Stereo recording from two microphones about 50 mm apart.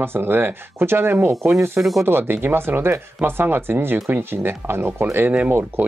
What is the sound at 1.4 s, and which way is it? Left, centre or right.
Speech, right.